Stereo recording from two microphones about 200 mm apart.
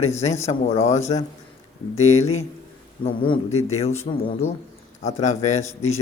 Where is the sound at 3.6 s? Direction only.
35° left (ahead or behind).